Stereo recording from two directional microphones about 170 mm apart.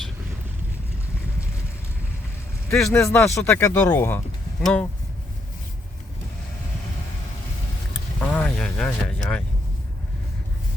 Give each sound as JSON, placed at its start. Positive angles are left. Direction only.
{"t": 2.7, "sound": "speech", "side_deg": 5}
{"t": 3.0, "sound": "speech", "side_deg": 15}
{"t": 8.2, "sound": "mechanisms", "side_deg": 10}